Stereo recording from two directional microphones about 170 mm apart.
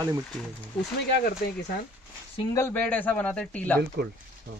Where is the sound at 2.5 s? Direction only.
15° left (ahead or behind).